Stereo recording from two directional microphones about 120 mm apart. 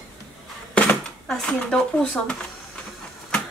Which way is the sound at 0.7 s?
10° left (ahead or behind).